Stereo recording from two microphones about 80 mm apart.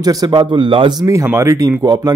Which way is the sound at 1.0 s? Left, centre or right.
Right.